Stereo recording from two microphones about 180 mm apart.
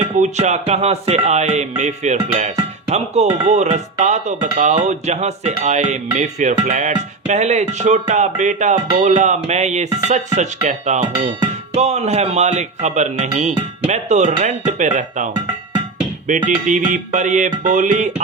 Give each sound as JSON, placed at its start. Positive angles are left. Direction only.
{"t": 0.2, "sound": "speech", "side_deg": -40}
{"t": 16.2, "sound": "music", "side_deg": -45}